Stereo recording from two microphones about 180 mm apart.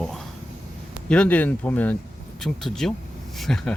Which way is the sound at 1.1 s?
5° left (ahead or behind).